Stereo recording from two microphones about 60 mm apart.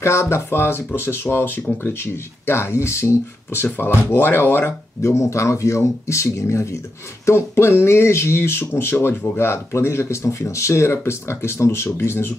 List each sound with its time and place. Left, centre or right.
0.0 s speech: left
5.2 s speech: left